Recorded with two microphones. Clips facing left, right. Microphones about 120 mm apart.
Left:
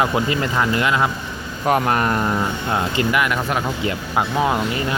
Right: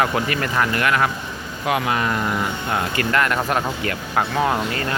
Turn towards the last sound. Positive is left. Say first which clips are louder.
# left 1 dB
turn(degrees=15)  # may be behind; listen again after turning